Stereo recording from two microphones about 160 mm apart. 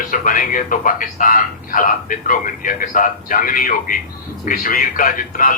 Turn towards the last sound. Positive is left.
turn(degrees=60)  # may be behind; listen again after turning